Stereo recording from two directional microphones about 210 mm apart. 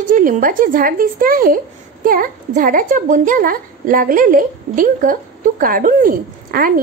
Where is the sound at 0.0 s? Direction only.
40° right (ahead or behind).